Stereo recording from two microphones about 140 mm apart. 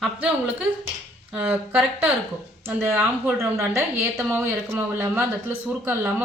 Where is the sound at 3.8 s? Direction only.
15° right (ahead or behind).